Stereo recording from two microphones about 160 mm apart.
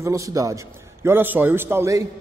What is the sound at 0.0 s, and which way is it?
A man's voice, 20° right (ahead or behind).